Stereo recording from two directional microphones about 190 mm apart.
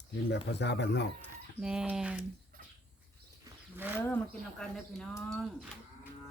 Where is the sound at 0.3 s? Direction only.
65° left (ahead or behind).